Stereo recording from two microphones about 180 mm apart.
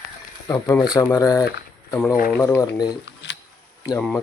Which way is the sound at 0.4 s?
20° left (ahead or behind).